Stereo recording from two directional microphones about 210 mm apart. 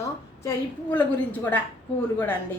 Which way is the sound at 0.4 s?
10° left (ahead or behind).